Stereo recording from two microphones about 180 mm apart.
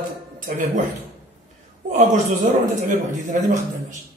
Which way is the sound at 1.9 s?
45° right (ahead or behind).